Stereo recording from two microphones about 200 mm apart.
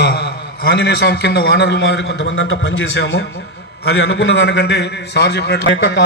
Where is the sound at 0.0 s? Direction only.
55° left (ahead or behind).